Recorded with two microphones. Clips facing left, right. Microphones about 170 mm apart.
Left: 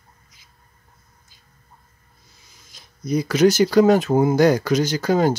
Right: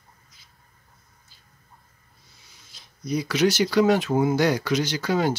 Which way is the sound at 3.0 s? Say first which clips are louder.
Left 5 dB; 45° left (ahead or behind).